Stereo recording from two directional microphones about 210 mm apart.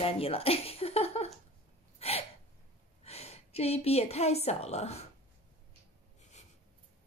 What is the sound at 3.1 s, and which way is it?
A woman's voice, 30° left (ahead or behind).